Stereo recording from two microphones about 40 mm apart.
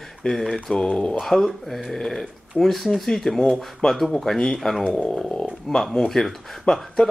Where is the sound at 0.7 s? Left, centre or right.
Centre.